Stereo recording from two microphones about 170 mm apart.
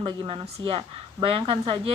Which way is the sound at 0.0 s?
30° right (ahead or behind).